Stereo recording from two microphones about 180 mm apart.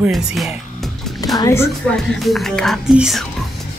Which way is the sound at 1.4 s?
15° left (ahead or behind).